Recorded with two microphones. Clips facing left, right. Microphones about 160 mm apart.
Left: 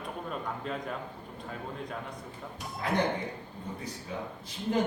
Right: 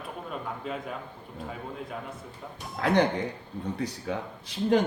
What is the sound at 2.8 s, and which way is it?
Speech, 80° right.